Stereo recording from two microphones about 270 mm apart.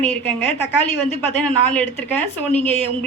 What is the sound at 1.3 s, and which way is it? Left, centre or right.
A woman's voice, centre.